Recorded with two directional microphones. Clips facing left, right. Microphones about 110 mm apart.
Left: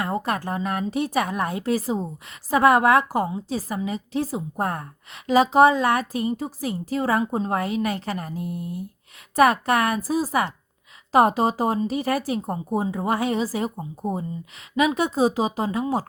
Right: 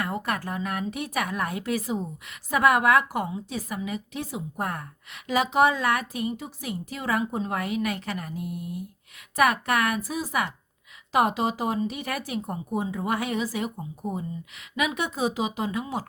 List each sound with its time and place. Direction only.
0.0 s a woman's voice: 30° left (ahead or behind)